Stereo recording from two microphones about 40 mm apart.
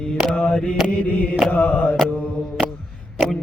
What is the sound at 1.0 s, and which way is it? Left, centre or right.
Mantra, left.